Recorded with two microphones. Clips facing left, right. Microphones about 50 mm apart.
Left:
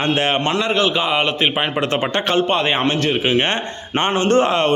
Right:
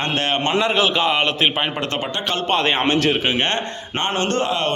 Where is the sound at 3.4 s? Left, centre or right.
Centre.